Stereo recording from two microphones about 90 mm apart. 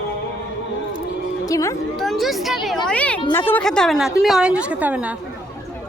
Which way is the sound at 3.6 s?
5° left (ahead or behind).